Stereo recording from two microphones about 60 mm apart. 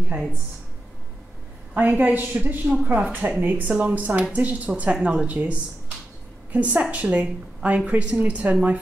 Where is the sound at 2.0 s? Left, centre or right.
Right.